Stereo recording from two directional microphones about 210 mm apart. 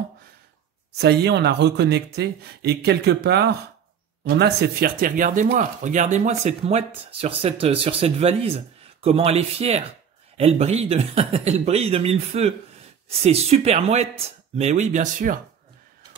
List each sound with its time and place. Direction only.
0.9 s speech: 50° right (ahead or behind)